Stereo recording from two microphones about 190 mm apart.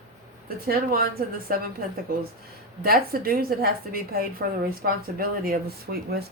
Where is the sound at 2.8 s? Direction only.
50° right (ahead or behind).